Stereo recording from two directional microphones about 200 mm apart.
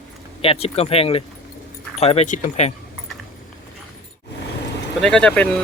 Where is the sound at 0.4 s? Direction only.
30° left (ahead or behind).